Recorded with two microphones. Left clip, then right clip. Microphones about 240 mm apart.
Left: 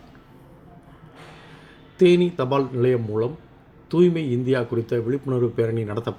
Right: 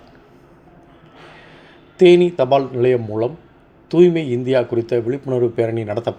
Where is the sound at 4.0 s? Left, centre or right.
Centre.